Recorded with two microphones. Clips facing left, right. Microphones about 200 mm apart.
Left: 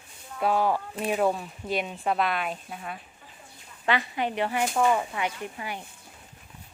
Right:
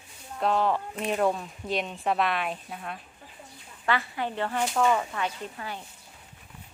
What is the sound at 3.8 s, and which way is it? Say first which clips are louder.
Speech: left 2 dB; 20° left (ahead or behind).